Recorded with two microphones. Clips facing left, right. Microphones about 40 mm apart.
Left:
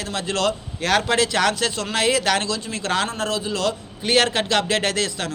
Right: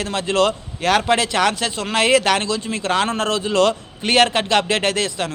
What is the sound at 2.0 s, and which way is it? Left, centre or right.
A man's voice, right.